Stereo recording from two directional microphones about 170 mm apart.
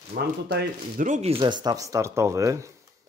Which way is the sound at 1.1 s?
40° right (ahead or behind).